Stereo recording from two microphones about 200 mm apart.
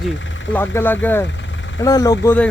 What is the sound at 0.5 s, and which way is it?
Speech, 10° left (ahead or behind).